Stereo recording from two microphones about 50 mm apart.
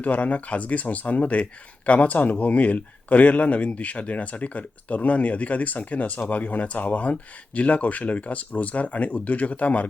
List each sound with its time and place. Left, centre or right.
0.0 s speech: left